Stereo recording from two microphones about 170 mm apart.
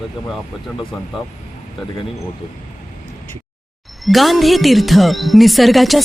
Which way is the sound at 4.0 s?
Centre (ahead or behind).